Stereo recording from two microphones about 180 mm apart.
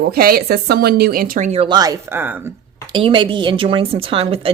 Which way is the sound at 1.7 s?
20° right (ahead or behind).